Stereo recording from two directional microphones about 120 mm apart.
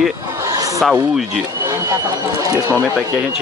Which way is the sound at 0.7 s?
Centre (ahead or behind).